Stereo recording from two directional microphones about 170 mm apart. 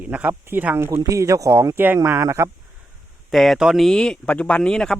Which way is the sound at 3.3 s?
Centre (ahead or behind).